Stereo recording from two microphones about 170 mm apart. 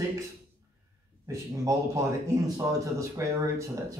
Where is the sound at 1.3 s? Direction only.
20° right (ahead or behind).